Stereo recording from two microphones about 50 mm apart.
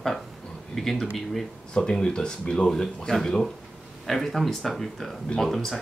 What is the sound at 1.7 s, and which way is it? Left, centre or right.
Speech, centre.